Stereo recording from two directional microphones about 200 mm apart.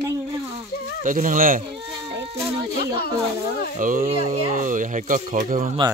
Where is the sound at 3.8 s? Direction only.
40° right (ahead or behind).